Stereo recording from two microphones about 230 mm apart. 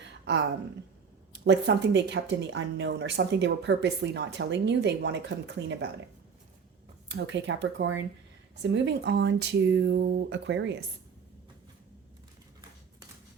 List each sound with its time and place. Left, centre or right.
0.0 s a sound: right
1.3 s speech: right
7.1 s speech: right